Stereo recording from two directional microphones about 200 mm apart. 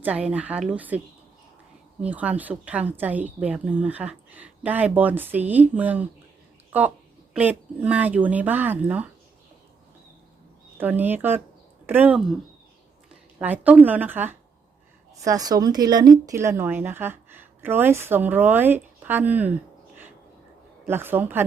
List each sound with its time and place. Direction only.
0.0 s a woman's voice: 5° right (ahead or behind)
7.3 s a woman's voice: 10° right (ahead or behind)
10.8 s a woman's voice: 10° right (ahead or behind)
13.4 s a woman's voice: 10° right (ahead or behind)
20.8 s a woman's voice: 10° right (ahead or behind)